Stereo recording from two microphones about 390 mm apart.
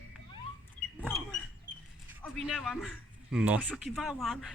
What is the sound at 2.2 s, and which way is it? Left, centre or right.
Speech, centre.